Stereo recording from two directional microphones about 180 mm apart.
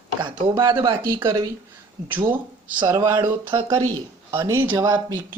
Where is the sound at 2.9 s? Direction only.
15° right (ahead or behind).